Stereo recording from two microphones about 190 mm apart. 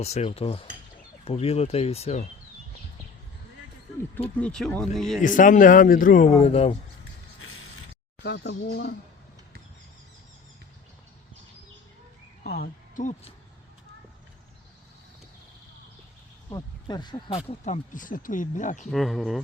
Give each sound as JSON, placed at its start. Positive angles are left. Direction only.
{"t": 0.0, "sound": "speech", "side_deg": 35}
{"t": 4.4, "sound": "speech", "side_deg": 5}
{"t": 5.2, "sound": "speech", "side_deg": 45}
{"t": 6.4, "sound": "speech", "side_deg": 30}
{"t": 8.2, "sound": "speech", "side_deg": 60}
{"t": 12.4, "sound": "a woman's voice", "side_deg": 50}
{"t": 16.5, "sound": "speech", "side_deg": 20}
{"t": 18.9, "sound": "speech", "side_deg": 0}